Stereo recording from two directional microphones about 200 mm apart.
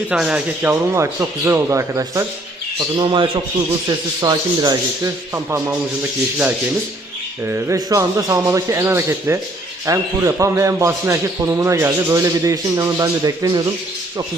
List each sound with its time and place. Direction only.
0.1 s a man's voice: 5° right (ahead or behind)
7.4 s a man's voice: 15° right (ahead or behind)